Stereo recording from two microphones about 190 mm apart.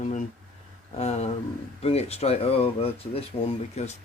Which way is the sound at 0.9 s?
35° left (ahead or behind).